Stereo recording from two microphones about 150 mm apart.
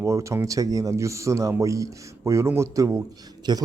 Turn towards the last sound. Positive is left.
turn(degrees=-30)  # may be behind; listen again after turning